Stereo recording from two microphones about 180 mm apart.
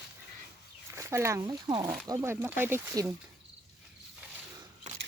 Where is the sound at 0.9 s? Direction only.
15° right (ahead or behind).